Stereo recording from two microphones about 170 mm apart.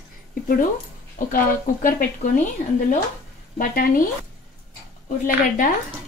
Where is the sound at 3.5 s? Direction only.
55° left (ahead or behind).